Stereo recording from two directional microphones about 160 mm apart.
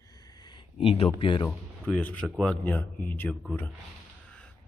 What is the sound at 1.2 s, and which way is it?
Speech, 30° left (ahead or behind).